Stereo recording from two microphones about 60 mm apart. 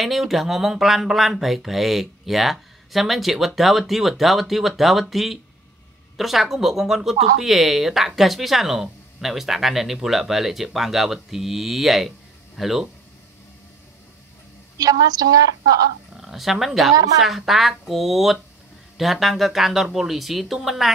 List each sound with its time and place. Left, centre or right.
0.0 s speech: centre
14.8 s a woman's voice: right
16.2 s speech: centre